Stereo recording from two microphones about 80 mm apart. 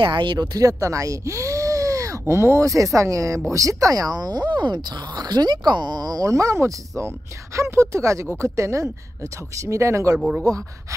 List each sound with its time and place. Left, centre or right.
0.0 s speech: right
0.6 s speech: right
10.1 s speech: centre
10.4 s speech: right